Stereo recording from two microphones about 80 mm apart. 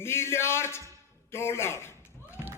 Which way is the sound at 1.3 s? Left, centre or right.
Left.